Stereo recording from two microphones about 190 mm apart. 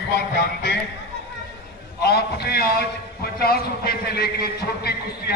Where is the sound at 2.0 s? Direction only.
60° left (ahead or behind).